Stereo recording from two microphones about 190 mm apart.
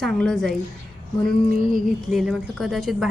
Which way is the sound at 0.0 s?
Centre (ahead or behind).